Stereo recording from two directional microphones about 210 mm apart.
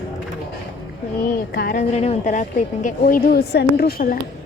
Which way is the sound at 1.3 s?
45° left (ahead or behind).